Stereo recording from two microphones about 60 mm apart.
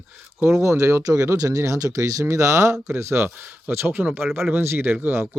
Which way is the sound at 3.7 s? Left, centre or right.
Right.